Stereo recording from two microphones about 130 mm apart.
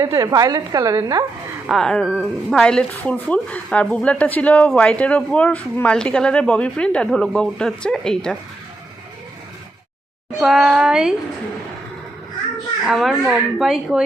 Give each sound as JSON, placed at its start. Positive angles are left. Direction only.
{"t": 0.0, "sound": "a woman's voice", "side_deg": -25}
{"t": 1.6, "sound": "a woman's voice", "side_deg": 5}
{"t": 10.4, "sound": "speech", "side_deg": -5}
{"t": 12.8, "sound": "speech", "side_deg": 0}